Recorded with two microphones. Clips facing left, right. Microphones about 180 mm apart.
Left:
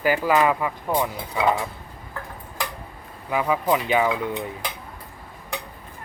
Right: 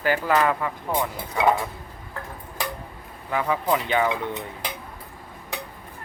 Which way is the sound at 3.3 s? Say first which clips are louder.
Left 2 dB; 10° left (ahead or behind).